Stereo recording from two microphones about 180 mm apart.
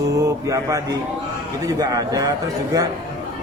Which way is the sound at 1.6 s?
20° right (ahead or behind).